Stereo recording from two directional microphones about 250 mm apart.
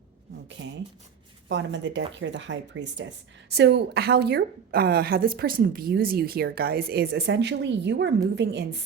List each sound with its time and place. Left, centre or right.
1.5 s a woman's voice: right